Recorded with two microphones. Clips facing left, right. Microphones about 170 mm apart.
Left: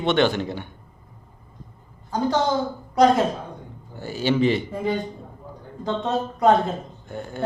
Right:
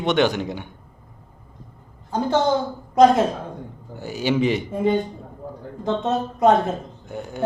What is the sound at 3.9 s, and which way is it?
A man's voice, 15° right (ahead or behind).